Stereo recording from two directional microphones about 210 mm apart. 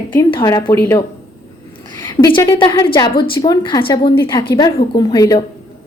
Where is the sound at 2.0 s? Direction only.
10° left (ahead or behind).